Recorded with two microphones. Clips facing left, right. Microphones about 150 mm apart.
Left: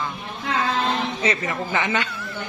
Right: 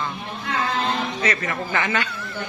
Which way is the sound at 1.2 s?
20° left (ahead or behind).